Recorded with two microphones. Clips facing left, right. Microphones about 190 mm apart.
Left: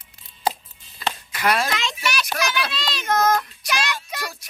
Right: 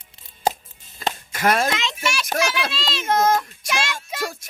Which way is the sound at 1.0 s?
45° right (ahead or behind).